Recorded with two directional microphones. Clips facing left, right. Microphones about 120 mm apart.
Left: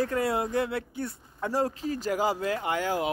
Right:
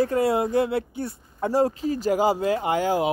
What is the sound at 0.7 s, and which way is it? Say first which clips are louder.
Speech: right 5 dB; 30° right (ahead or behind).